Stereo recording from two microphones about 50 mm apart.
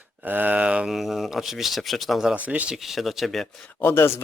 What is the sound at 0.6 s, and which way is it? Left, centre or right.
Speech, right.